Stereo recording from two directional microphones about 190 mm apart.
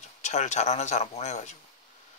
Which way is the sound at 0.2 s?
40° left (ahead or behind).